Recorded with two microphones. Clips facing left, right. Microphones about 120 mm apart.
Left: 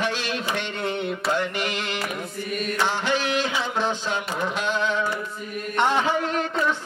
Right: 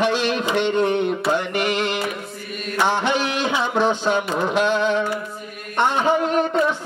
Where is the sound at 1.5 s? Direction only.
60° right (ahead or behind).